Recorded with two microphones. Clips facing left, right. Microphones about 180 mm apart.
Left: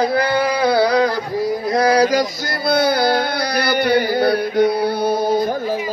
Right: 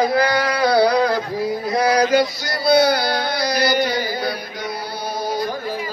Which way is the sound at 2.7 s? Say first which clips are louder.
Even; 55° left (ahead or behind).